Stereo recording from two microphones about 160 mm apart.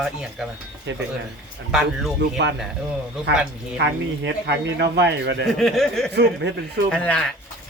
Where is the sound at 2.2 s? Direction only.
90° right.